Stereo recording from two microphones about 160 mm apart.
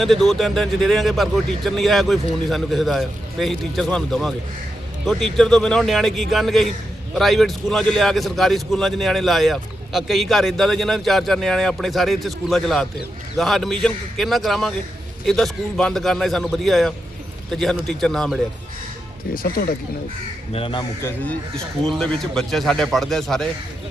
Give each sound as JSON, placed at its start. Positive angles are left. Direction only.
{"t": 0.0, "sound": "a man's voice", "side_deg": 0}
{"t": 19.3, "sound": "speech", "side_deg": 65}
{"t": 20.5, "sound": "speech", "side_deg": 35}
{"t": 21.2, "sound": "a man's voice", "side_deg": 5}